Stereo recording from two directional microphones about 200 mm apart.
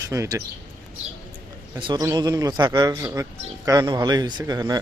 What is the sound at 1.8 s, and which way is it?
A man's voice, 15° right (ahead or behind).